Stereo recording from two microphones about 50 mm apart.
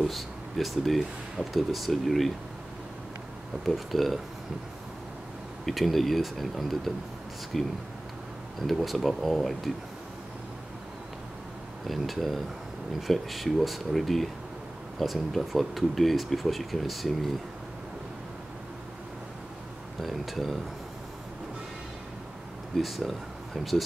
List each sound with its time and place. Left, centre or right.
0.0 s speech: centre
3.6 s speech: centre
5.7 s speech: centre
11.9 s speech: centre
20.0 s speech: centre
22.8 s speech: centre